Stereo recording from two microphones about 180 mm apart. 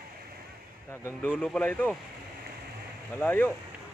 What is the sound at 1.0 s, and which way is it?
Speech, 10° left (ahead or behind).